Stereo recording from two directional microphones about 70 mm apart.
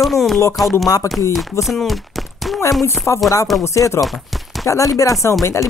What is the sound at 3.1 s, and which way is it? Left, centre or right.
Speech, left.